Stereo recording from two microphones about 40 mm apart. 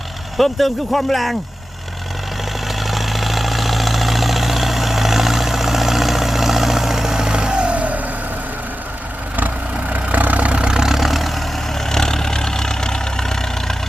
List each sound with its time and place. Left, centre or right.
0.3 s speech: centre
2.8 s vehicle: centre; by 8.0 s right
9.9 s vehicle: right; by 11.4 s centre
11.9 s vehicle: centre